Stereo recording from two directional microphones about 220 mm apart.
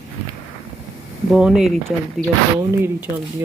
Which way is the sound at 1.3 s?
5° right (ahead or behind).